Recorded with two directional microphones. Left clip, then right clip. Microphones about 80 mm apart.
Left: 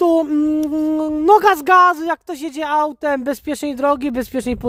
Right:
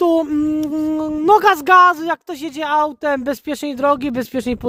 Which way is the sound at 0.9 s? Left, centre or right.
Left.